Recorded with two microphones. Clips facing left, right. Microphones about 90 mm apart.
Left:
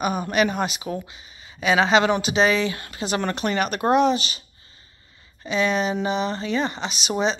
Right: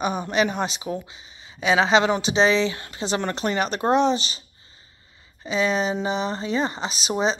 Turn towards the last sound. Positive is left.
turn(degrees=-35)  # may be behind; listen again after turning